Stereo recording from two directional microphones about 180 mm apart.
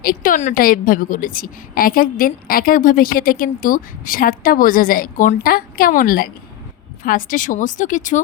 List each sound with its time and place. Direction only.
0.0 s a woman's voice: 50° left (ahead or behind)